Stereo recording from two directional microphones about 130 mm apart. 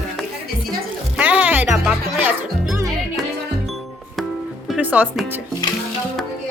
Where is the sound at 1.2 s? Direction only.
10° right (ahead or behind).